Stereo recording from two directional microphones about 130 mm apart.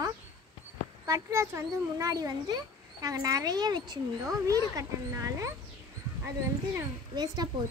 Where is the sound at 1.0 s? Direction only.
25° right (ahead or behind).